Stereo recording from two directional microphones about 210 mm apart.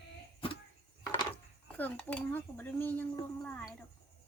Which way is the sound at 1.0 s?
15° left (ahead or behind).